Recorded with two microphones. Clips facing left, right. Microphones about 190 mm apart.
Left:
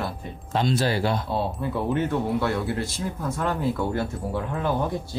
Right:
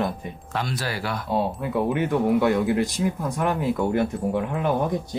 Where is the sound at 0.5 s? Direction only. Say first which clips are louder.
Left 6 dB; 25° left (ahead or behind).